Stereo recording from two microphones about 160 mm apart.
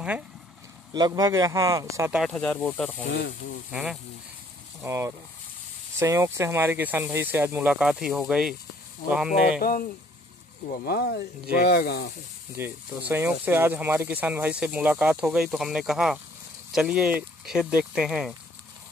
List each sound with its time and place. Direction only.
0.9 s speech: 25° right (ahead or behind)
2.1 s speech: 5° left (ahead or behind)
3.7 s speech: 5° right (ahead or behind)
4.8 s speech: 20° right (ahead or behind)
9.6 s speech: 60° left (ahead or behind); by 12.1 s 90° left
12.5 s speech: 15° right (ahead or behind)